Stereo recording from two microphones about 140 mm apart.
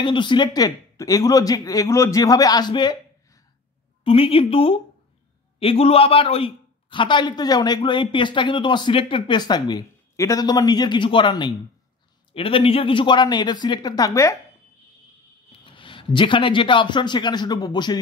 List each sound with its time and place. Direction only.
0.0 s a man's voice: 35° left (ahead or behind)
4.0 s a man's voice: 40° left (ahead or behind); by 14.3 s 25° left (ahead or behind)
15.6 s a man's voice: 35° left (ahead or behind)